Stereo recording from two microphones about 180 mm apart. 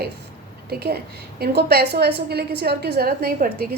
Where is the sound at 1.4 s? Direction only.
65° right (ahead or behind).